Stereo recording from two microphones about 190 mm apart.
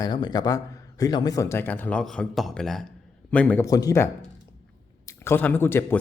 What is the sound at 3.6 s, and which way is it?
Speech, 20° left (ahead or behind).